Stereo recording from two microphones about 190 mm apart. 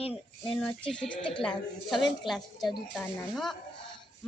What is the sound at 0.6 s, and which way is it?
A woman's voice, 5° left (ahead or behind).